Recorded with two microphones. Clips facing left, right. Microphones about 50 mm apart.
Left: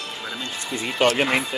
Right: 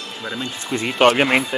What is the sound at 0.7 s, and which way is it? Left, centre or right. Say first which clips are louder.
Speech: right 5 dB; right.